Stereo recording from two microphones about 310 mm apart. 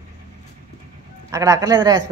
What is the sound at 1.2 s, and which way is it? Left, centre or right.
Speech, centre.